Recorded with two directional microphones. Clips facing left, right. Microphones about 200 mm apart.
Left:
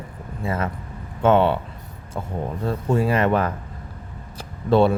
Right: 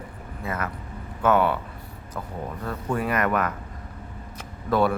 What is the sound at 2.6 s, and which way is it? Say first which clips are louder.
A man's voice: left 6 dB; 25° left (ahead or behind).